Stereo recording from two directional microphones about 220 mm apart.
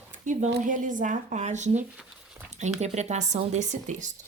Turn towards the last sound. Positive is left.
turn(degrees=-35)  # may be behind; listen again after turning